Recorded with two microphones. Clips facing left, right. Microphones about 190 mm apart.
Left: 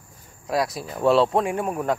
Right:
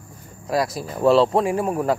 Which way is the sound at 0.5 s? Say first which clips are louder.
Right 2 dB; centre (ahead or behind).